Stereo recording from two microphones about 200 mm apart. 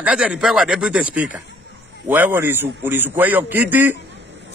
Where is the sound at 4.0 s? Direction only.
60° right (ahead or behind).